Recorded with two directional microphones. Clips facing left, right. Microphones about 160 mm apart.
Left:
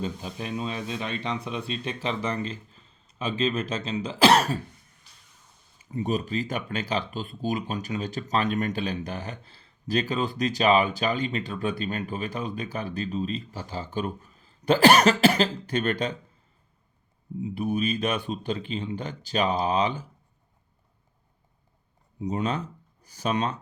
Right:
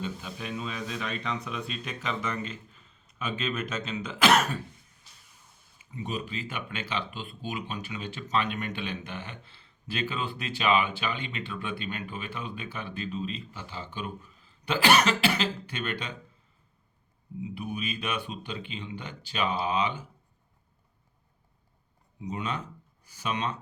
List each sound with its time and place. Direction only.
0.0 s speech: 35° left (ahead or behind)
5.8 s speech: 40° left (ahead or behind)
17.5 s speech: 40° left (ahead or behind)
22.2 s speech: 40° left (ahead or behind)